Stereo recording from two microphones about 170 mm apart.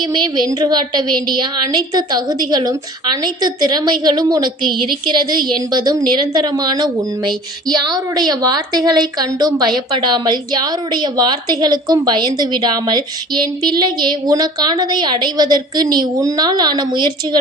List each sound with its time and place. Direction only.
0.0 s a woman's voice: 25° right (ahead or behind)